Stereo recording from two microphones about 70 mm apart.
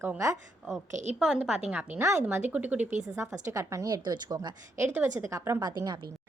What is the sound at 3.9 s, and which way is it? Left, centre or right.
Speech, right.